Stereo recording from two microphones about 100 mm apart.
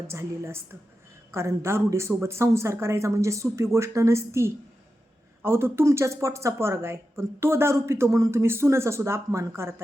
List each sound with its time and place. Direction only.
0.1 s a woman's voice: 25° right (ahead or behind)